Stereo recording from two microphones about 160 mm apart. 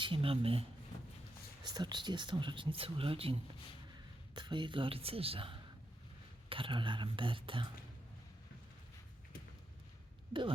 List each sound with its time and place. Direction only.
0.0 s speech: 35° right (ahead or behind)
1.6 s speech: 25° right (ahead or behind)